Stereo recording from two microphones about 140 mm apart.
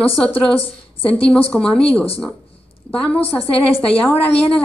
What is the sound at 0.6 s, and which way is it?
Speech, 40° left (ahead or behind).